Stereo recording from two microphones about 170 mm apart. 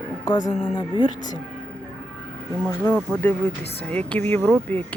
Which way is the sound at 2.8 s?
10° left (ahead or behind).